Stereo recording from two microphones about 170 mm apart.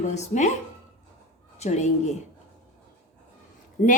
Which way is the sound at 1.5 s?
40° left (ahead or behind).